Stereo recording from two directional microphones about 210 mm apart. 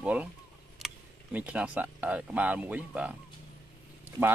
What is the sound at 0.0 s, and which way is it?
Speech, 5° right (ahead or behind).